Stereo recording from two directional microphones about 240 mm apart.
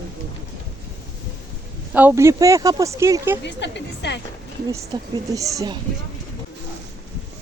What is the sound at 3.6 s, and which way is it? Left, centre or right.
Speech, left.